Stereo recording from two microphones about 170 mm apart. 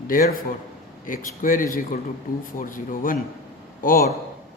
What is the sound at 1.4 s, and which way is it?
A man's voice, 55° left (ahead or behind).